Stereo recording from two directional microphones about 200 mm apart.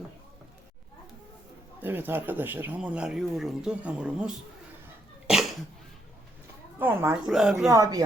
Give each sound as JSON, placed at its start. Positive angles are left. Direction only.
{"t": 1.8, "sound": "speech", "side_deg": -10}
{"t": 6.7, "sound": "speech", "side_deg": -10}
{"t": 7.7, "sound": "speech", "side_deg": -15}